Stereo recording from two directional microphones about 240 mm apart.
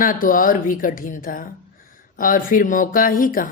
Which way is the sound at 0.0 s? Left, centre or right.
Left.